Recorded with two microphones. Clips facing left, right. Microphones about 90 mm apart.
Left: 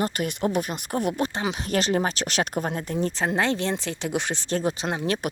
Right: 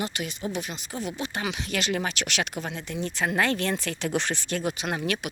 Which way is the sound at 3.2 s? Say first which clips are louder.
Right 1 dB; 25° left (ahead or behind).